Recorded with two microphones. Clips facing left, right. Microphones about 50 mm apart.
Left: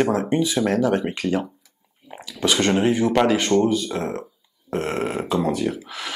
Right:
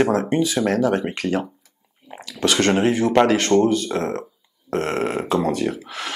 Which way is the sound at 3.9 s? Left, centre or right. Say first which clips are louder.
Right 3 dB; right.